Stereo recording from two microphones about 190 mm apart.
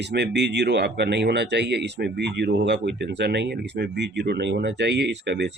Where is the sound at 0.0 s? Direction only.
65° right (ahead or behind).